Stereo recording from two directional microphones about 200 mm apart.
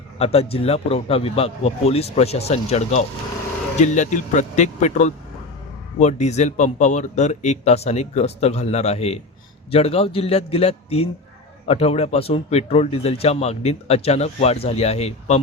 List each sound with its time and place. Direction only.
0.2 s a man's voice: 30° left (ahead or behind)